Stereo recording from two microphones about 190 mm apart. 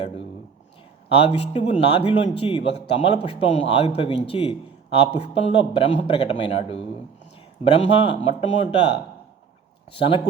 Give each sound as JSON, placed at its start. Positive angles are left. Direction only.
{"t": 1.1, "sound": "a man's voice", "side_deg": 30}
{"t": 9.9, "sound": "a man's voice", "side_deg": 30}